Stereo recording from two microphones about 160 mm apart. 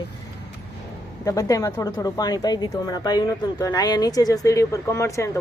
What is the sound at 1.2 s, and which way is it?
Speech, 20° left (ahead or behind).